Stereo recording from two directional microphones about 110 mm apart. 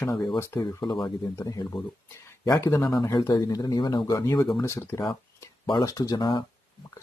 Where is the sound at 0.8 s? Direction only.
35° left (ahead or behind); by 5.0 s 20° left (ahead or behind).